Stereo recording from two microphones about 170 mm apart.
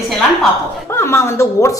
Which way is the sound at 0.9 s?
15° left (ahead or behind).